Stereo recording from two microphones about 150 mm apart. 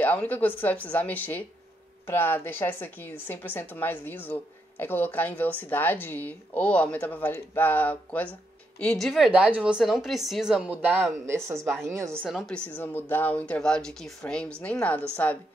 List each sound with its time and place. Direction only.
0.0 s a woman's voice: 10° left (ahead or behind); by 11.5 s 15° right (ahead or behind)
12.2 s a woman's voice: centre (ahead or behind)